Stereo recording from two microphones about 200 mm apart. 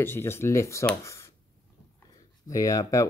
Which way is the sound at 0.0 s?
10° left (ahead or behind).